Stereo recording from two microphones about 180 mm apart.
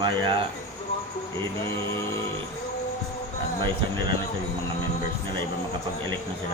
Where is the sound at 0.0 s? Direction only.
25° right (ahead or behind).